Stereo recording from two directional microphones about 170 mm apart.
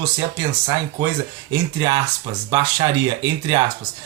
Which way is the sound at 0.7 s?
20° right (ahead or behind).